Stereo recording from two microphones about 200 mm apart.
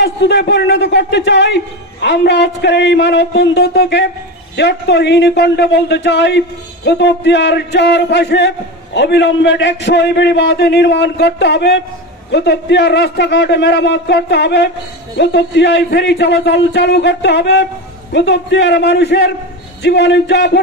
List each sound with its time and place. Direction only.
0.0 s a man's voice: 60° left (ahead or behind)